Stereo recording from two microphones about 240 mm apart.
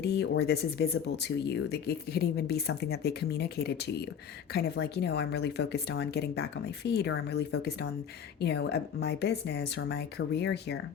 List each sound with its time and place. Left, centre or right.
0.0 s speech: left